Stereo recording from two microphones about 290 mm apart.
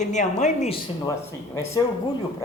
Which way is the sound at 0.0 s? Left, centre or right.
Left.